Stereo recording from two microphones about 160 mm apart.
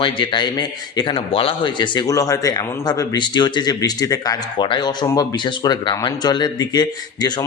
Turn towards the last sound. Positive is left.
turn(degrees=25)  # may be behind; listen again after turning